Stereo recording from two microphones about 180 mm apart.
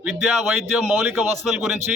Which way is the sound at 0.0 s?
10° right (ahead or behind).